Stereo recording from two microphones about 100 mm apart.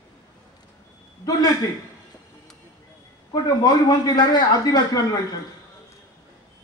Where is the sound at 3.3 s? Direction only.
40° left (ahead or behind).